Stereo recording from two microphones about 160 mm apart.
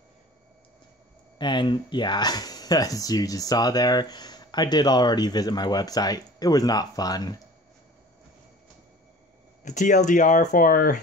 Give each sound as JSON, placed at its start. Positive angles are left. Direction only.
{"t": 1.4, "sound": "speech", "side_deg": 30}
{"t": 9.7, "sound": "speech", "side_deg": 50}